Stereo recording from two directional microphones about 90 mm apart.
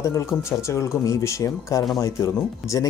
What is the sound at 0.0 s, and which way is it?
Speech, 35° left (ahead or behind).